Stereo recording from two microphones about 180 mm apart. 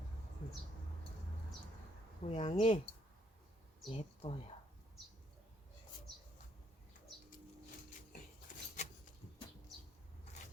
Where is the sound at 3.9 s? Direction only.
35° left (ahead or behind).